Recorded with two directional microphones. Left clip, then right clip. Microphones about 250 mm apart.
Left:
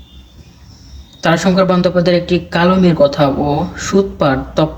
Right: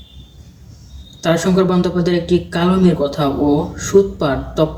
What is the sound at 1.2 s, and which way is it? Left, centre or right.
Speech, left.